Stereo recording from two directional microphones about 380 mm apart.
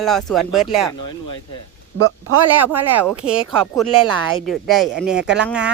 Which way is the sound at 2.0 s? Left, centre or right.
Right.